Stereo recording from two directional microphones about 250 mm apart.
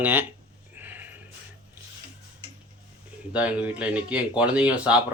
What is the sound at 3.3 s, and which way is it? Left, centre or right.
Speech, centre.